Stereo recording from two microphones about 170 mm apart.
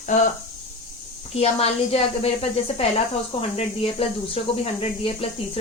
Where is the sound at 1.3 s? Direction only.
35° left (ahead or behind).